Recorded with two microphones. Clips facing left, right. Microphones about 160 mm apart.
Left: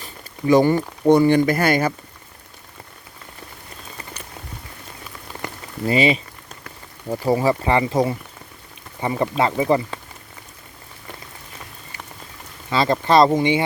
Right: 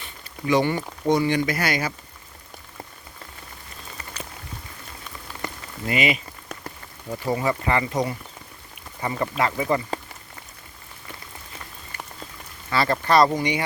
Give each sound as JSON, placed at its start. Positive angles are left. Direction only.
{"t": 0.0, "sound": "a sound", "side_deg": 40}
{"t": 1.0, "sound": "speech", "side_deg": 55}
{"t": 5.9, "sound": "speech", "side_deg": 30}
{"t": 12.7, "sound": "speech", "side_deg": 20}